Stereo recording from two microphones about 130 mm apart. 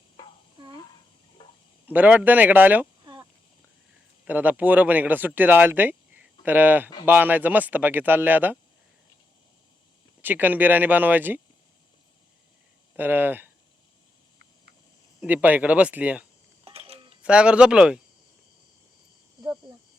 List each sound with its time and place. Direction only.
1.9 s speech: 10° right (ahead or behind)
4.3 s speech: 15° right (ahead or behind)
10.2 s speech: 15° right (ahead or behind)
13.0 s speech: 15° right (ahead or behind)
15.2 s speech: 15° right (ahead or behind)
16.6 s a sound: 50° right (ahead or behind)
17.2 s speech: 10° right (ahead or behind)